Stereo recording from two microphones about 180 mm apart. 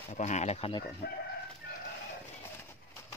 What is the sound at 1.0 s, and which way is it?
Speech, 60° left (ahead or behind).